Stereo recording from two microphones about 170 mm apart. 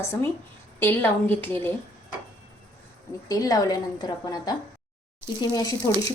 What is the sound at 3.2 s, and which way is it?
A woman's voice, 20° left (ahead or behind).